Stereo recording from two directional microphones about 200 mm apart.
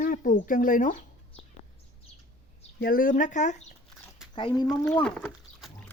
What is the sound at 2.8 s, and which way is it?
Speech, 45° left (ahead or behind).